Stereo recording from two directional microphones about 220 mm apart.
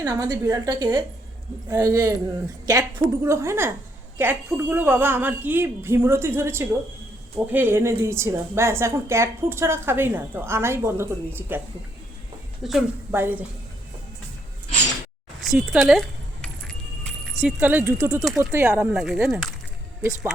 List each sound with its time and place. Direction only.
0.0 s a woman's voice: 15° right (ahead or behind)
12.6 s a woman's voice: 5° right (ahead or behind)
15.4 s music: centre (ahead or behind)
18.3 s speech: 10° right (ahead or behind)